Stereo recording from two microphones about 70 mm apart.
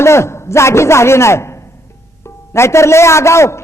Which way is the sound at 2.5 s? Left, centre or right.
Left.